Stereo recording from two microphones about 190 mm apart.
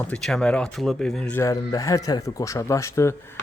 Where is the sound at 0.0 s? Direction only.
5° left (ahead or behind).